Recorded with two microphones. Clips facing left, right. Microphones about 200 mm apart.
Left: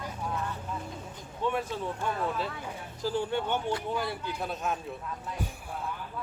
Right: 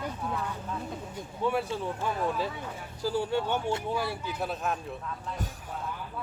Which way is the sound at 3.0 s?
10° right (ahead or behind).